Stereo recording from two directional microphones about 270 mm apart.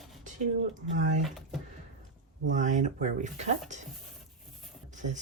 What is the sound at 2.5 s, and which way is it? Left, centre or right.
Speech, right.